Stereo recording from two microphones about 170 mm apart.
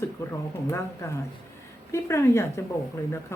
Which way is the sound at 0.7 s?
15° left (ahead or behind).